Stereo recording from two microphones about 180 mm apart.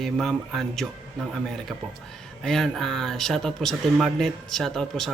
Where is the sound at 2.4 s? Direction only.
5° left (ahead or behind).